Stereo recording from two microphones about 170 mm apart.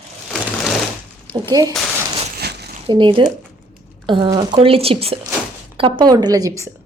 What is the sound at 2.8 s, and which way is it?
A woman's voice, 30° right (ahead or behind).